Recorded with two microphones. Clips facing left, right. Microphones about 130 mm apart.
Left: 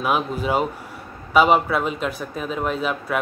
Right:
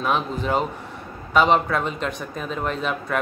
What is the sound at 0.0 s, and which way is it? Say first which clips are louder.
A man's voice: left 1 dB; 10° left (ahead or behind).